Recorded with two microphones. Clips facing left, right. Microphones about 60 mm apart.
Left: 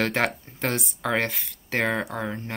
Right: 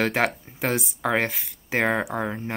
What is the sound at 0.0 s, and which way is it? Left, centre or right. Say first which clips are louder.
Speech: right 1 dB; centre.